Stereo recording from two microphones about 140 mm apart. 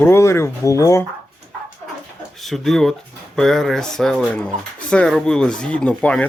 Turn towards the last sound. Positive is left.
turn(degrees=5)  # may be behind; listen again after turning